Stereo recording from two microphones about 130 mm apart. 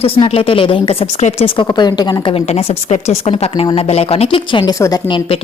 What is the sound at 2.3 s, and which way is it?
Speech, 55° left (ahead or behind).